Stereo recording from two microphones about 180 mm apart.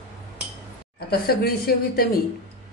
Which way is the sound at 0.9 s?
60° left (ahead or behind).